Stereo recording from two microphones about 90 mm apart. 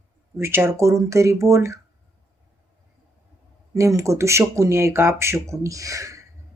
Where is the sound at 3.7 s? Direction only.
35° right (ahead or behind).